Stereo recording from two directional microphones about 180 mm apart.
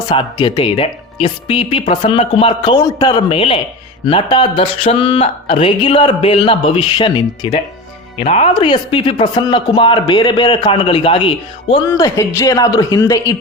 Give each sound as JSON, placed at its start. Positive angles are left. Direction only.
{"t": 0.0, "sound": "speech", "side_deg": 25}
{"t": 11.7, "sound": "speech", "side_deg": 20}